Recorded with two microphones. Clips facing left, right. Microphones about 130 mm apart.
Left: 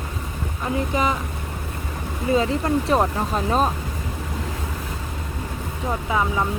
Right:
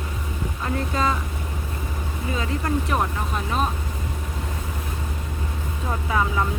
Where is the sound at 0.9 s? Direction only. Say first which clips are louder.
Left 1 dB; 15° left (ahead or behind).